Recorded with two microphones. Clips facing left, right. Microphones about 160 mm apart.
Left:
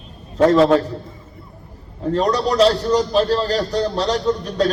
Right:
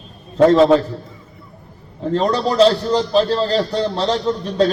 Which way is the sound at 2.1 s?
30° right (ahead or behind).